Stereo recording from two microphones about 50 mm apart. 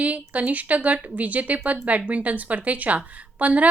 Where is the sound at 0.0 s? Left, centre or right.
Right.